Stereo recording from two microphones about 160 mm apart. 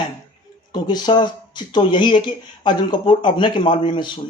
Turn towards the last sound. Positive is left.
turn(degrees=30)  # may be behind; listen again after turning